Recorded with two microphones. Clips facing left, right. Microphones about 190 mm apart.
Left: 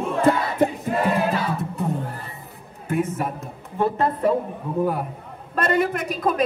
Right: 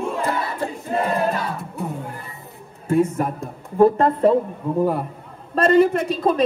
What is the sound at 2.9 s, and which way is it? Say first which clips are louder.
A man's voice: right 5 dB; 30° right (ahead or behind).